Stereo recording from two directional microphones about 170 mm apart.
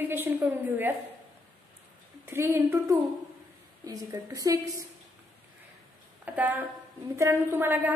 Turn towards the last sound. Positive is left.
turn(degrees=-10)  # may be behind; listen again after turning